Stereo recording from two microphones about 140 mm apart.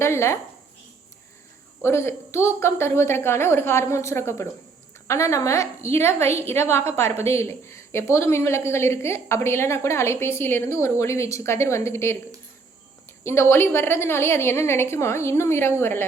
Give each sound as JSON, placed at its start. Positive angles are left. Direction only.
{"t": 0.0, "sound": "a woman's voice", "side_deg": 20}
{"t": 1.8, "sound": "a woman's voice", "side_deg": 20}